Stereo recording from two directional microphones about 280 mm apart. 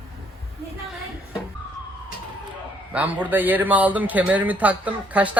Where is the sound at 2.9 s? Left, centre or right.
Centre.